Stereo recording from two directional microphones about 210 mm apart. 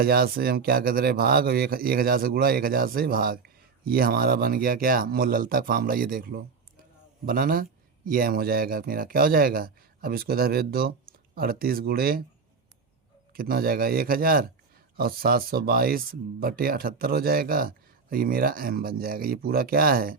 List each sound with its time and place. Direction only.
0.0 s a man's voice: 45° right (ahead or behind)
13.3 s a man's voice: 45° right (ahead or behind)